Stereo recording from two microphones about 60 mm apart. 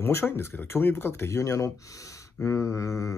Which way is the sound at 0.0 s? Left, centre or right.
Left.